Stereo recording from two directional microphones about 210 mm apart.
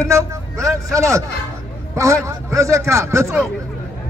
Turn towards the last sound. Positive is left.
turn(degrees=-15)  # may be behind; listen again after turning